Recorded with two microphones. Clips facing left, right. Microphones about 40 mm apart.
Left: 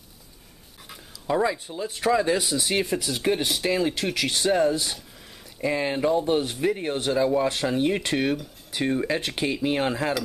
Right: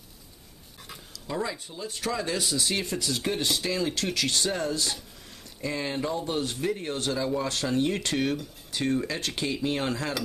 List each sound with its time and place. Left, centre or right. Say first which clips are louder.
1.2 s speech: left 8 dB; left